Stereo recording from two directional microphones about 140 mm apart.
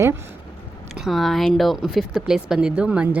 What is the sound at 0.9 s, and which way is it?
Speech, centre (ahead or behind).